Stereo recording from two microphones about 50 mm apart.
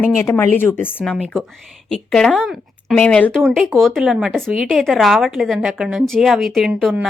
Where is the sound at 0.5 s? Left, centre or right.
Left.